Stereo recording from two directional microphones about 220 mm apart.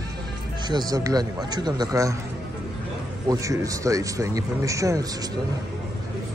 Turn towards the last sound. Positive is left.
turn(degrees=-15)  # may be behind; listen again after turning